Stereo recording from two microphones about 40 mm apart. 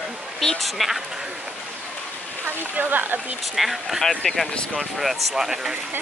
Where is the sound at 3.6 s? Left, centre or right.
Centre.